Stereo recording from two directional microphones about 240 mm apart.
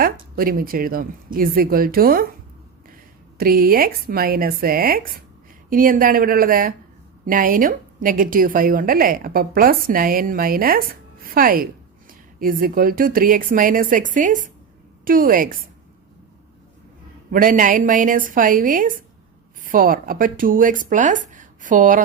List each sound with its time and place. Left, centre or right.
0.0 s a woman's voice: right
3.3 s a woman's voice: right
17.3 s a woman's voice: right